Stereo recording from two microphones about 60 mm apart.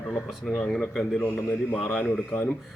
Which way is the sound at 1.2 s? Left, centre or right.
Left.